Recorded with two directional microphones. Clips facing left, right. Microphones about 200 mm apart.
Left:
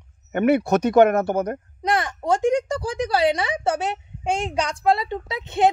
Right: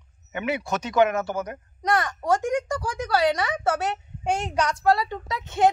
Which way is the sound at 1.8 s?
25° left (ahead or behind).